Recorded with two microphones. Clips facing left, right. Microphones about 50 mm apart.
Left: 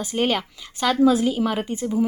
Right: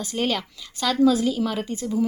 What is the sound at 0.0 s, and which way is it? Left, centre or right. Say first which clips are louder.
Speech: left 3 dB; centre.